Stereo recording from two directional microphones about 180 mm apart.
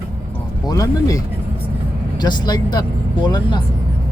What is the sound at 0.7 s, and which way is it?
Speech, 20° left (ahead or behind).